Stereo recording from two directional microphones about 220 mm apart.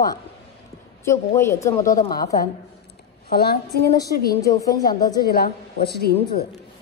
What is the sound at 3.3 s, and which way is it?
A woman's voice, 45° left (ahead or behind).